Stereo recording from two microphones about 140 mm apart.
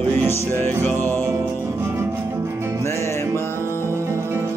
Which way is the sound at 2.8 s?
20° left (ahead or behind).